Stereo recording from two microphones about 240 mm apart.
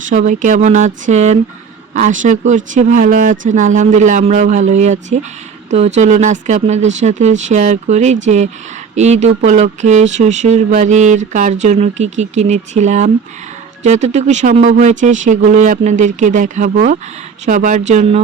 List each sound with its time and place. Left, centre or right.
0.0 s speech: right